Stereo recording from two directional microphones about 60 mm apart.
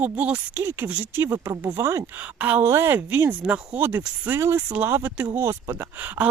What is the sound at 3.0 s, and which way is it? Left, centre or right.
Speech, right.